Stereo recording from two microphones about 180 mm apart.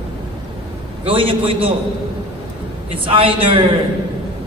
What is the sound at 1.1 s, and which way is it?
Speech, 30° right (ahead or behind).